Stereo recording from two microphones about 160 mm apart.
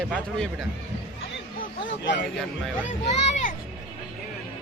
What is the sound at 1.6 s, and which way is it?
Speech, 90° left.